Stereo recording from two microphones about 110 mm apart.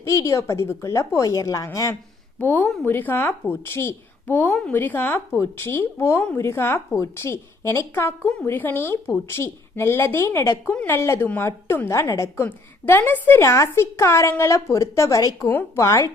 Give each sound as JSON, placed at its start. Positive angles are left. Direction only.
{"t": 0.0, "sound": "a woman's voice", "side_deg": 30}
{"t": 2.4, "sound": "a woman's voice", "side_deg": 15}